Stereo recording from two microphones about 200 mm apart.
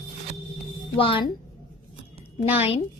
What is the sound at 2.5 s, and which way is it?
Speech, 30° left (ahead or behind).